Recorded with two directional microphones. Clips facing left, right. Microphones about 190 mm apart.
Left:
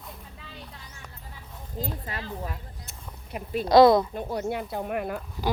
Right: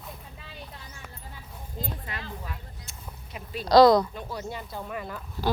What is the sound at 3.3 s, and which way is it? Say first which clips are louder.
Speech: left 7 dB; 55° left (ahead or behind).